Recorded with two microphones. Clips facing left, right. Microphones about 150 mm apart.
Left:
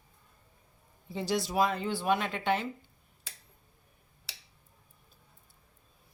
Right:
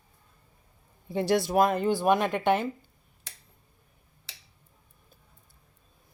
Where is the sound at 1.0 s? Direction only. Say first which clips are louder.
Right 7 dB; 55° right (ahead or behind).